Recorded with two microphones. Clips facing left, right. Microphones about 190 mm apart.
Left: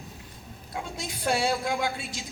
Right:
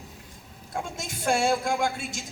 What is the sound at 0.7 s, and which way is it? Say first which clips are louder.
A woman's voice: right 2 dB; 45° right (ahead or behind).